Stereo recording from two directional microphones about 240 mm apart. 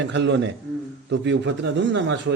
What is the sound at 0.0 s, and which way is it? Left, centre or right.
A man's voice, right.